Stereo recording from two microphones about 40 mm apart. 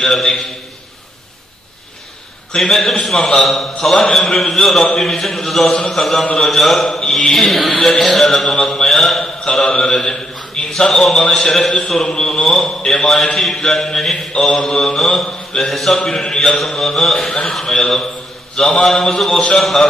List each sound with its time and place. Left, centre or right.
0.0 s a man's voice: centre
2.5 s a man's voice: centre
3.9 s a man's voice: centre
9.2 s mantra: centre
9.9 s a sound: centre
10.9 s a man's voice: centre
15.7 s a man's voice: centre
16.0 s a man's voice: centre
16.5 s a man's voice: centre